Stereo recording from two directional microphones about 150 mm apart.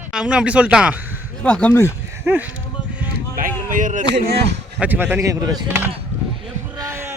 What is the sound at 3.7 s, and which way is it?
Speech, 60° right (ahead or behind).